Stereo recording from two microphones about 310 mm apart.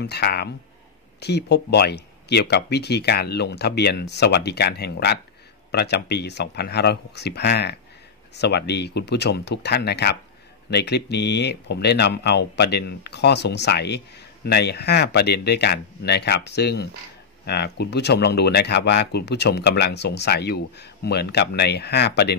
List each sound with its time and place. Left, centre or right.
0.0 s speech: left